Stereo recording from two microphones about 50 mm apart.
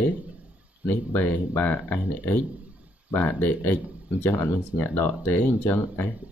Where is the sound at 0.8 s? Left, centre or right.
Left.